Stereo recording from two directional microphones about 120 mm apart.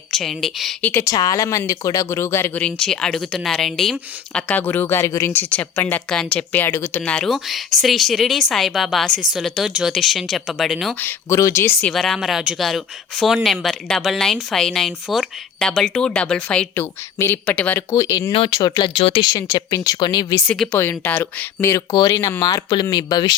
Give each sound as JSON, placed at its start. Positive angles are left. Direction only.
{"t": 0.1, "sound": "speech", "side_deg": 0}
{"t": 0.9, "sound": "speech", "side_deg": 20}
{"t": 1.1, "sound": "a woman's voice", "side_deg": 30}
{"t": 7.0, "sound": "speech", "side_deg": 5}
{"t": 11.0, "sound": "speech", "side_deg": 25}
{"t": 11.9, "sound": "speech", "side_deg": 0}
{"t": 16.8, "sound": "a woman's voice", "side_deg": 20}
{"t": 17.9, "sound": "speech", "side_deg": 25}
{"t": 18.3, "sound": "speech", "side_deg": 50}
{"t": 19.3, "sound": "speech", "side_deg": 30}
{"t": 20.7, "sound": "speech", "side_deg": 15}